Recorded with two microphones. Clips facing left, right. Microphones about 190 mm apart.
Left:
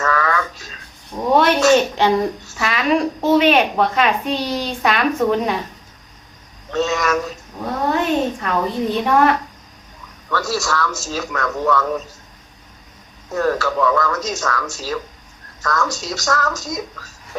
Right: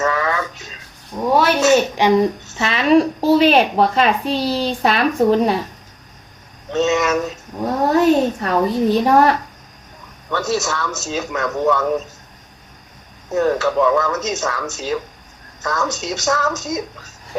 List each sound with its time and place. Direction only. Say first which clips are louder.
0.0 s a sound: right 1 dB; 20° right (ahead or behind)
1.1 s speech: right 2 dB; 5° right (ahead or behind)
1.6 s a child's voice: even; 15° right (ahead or behind); by 5.5 s 35° right (ahead or behind)
6.7 s a man's voice: right 2 dB; 20° right (ahead or behind)
7.9 s a child's voice: right 8 dB; 40° right (ahead or behind)
10.2 s a man's voice: right 2 dB; 20° right (ahead or behind)
13.3 s a man's voice: right 3 dB; 20° right (ahead or behind)